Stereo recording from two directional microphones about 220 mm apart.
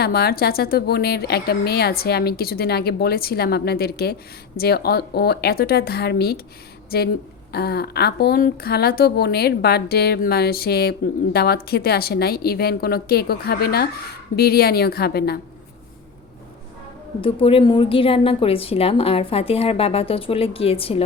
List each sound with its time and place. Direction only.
0.0 s speech: 45° left (ahead or behind)
7.5 s speech: 45° left (ahead or behind)
17.2 s a woman's voice: 25° left (ahead or behind)